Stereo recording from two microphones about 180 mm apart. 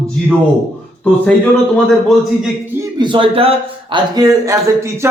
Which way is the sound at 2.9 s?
25° right (ahead or behind).